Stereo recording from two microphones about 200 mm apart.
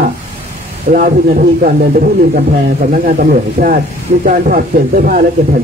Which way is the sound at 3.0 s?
45° right (ahead or behind).